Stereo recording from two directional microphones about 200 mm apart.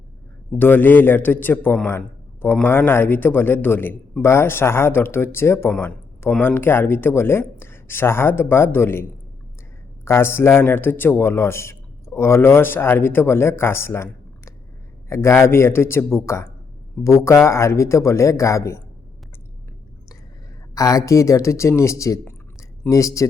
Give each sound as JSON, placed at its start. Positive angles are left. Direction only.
{"t": 0.6, "sound": "a man's voice", "side_deg": 10}
{"t": 20.7, "sound": "a man's voice", "side_deg": 15}